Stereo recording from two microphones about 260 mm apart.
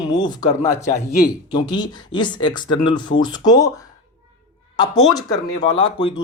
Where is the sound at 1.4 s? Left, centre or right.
Centre.